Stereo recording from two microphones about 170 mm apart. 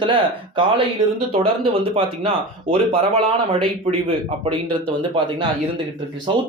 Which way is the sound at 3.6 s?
30° right (ahead or behind).